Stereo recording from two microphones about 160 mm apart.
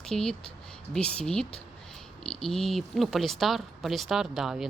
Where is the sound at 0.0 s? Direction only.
5° left (ahead or behind).